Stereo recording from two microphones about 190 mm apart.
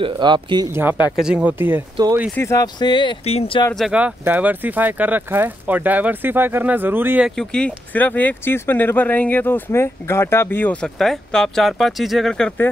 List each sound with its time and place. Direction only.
0.0 s speech: 25° right (ahead or behind)
0.7 s speech: 10° right (ahead or behind)
2.3 s speech: 15° left (ahead or behind); by 3.6 s 30° left (ahead or behind)
3.7 s speech: 5° right (ahead or behind)